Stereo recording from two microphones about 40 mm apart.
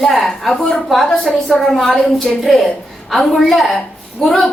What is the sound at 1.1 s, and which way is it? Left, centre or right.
Speech, centre.